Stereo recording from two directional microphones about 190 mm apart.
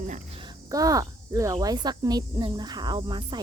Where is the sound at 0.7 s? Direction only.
20° right (ahead or behind).